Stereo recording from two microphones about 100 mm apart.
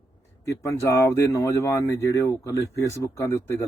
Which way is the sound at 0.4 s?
30° left (ahead or behind).